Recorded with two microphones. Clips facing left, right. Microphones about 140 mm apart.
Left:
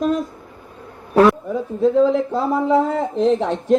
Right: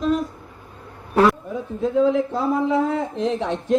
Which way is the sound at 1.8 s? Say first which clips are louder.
Left 3 dB; 35° left (ahead or behind).